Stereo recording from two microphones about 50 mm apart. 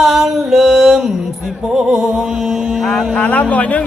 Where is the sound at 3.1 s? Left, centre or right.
Left.